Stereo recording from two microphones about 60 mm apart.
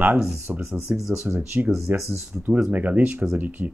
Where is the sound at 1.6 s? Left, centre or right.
Right.